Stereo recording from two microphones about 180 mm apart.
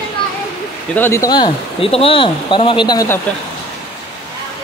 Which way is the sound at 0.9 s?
15° left (ahead or behind).